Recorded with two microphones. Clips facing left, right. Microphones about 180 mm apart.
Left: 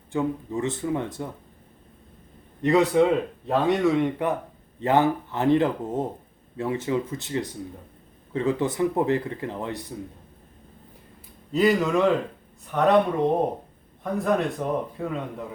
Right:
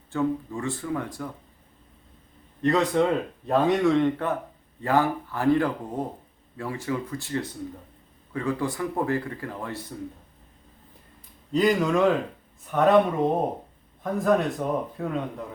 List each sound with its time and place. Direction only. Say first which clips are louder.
0.1 s speech: even; 20° left (ahead or behind)
2.6 s speech: left 3 dB; 10° left (ahead or behind)
11.5 s a man's voice: left 1 dB; centre (ahead or behind)